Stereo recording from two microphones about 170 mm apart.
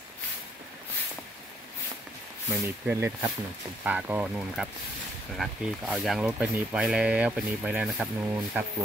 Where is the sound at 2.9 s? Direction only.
15° right (ahead or behind).